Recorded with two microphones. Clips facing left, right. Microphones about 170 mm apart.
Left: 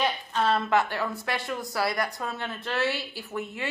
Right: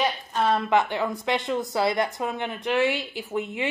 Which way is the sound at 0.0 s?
10° right (ahead or behind).